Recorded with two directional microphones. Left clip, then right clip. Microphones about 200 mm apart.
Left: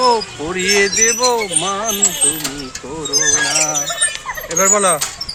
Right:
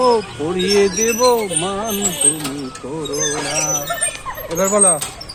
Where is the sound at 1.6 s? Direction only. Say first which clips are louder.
Left 2 dB; 45° left (ahead or behind).